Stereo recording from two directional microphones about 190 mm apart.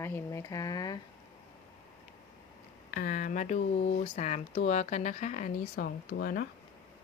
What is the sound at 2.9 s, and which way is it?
Speech, 50° left (ahead or behind).